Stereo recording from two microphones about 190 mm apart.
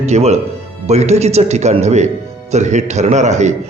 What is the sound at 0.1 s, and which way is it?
A man's voice, 35° right (ahead or behind).